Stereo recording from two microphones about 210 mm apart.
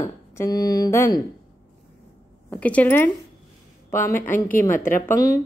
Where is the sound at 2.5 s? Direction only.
5° left (ahead or behind).